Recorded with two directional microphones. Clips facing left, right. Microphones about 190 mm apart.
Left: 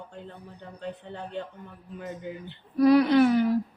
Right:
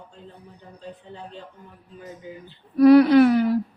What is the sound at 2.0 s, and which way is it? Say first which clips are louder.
Speech: left 2 dB; 65° left (ahead or behind).